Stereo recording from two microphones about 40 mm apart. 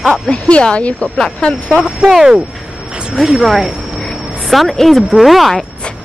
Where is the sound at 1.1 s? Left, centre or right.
Centre.